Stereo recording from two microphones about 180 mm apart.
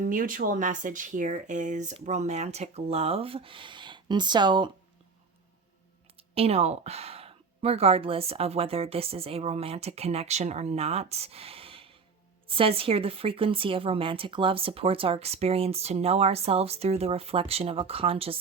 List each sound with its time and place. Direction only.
0.0 s speech: 50° right (ahead or behind); by 4.7 s 25° right (ahead or behind)
6.1 s speech: 30° right (ahead or behind)